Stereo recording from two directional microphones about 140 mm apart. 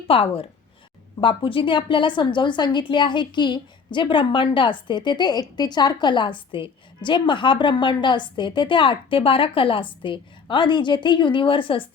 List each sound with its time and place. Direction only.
0.1 s a woman's voice: 40° left (ahead or behind)